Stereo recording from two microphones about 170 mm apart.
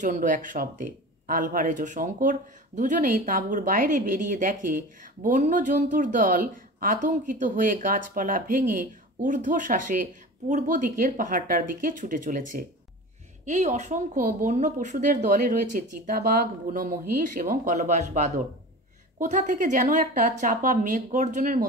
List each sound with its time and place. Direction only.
0.0 s speech: 50° right (ahead or behind)